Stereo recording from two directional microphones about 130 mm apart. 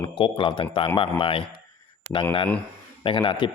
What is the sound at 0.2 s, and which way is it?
A man's voice, 40° left (ahead or behind).